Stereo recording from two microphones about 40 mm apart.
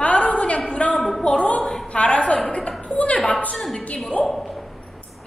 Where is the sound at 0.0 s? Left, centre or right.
Left.